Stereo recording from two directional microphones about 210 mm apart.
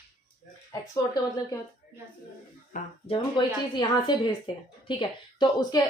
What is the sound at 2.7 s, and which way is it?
Speech, 35° left (ahead or behind).